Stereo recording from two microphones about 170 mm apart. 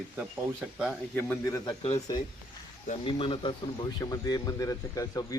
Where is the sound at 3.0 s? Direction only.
30° left (ahead or behind).